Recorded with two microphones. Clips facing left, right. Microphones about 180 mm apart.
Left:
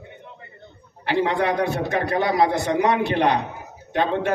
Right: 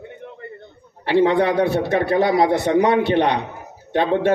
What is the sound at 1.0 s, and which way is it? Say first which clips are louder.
A man's voice: right 5 dB; 30° right (ahead or behind).